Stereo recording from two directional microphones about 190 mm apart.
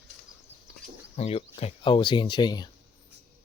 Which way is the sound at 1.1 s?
35° left (ahead or behind).